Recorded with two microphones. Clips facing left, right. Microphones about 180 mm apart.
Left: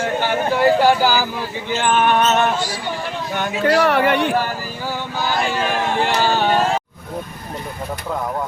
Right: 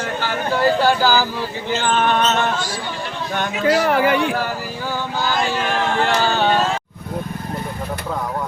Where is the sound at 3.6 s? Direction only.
65° left (ahead or behind).